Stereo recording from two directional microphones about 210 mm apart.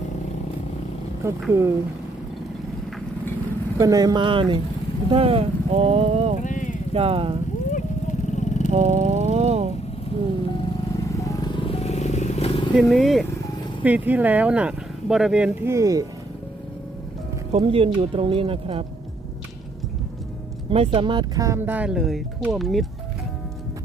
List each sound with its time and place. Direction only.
1.2 s speech: 15° right (ahead or behind)
3.8 s speech: 15° right (ahead or behind)
6.4 s clip-clop: 35° left (ahead or behind)
6.9 s speech: 30° right (ahead or behind)
8.3 s vehicle: 35° left (ahead or behind)
8.7 s vehicle: 30° right (ahead or behind)
11.2 s vehicle: 20° left (ahead or behind)
12.7 s speech: centre (ahead or behind); by 16.0 s 15° right (ahead or behind)
17.5 s speech: 25° right (ahead or behind)
20.7 s speech: 25° right (ahead or behind); by 22.9 s centre (ahead or behind)